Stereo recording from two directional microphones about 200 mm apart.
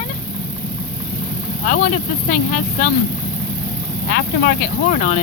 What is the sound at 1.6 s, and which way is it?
Speech, 45° left (ahead or behind).